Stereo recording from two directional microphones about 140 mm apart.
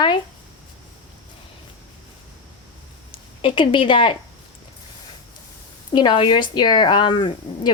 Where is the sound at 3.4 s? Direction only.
35° left (ahead or behind).